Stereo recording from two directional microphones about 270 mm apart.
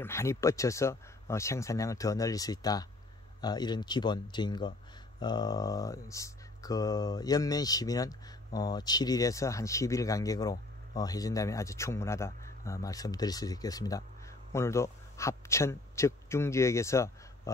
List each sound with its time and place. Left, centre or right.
0.0 s a man's voice: centre